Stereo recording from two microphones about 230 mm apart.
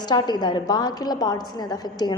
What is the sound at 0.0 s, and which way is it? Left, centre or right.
A woman's voice, centre.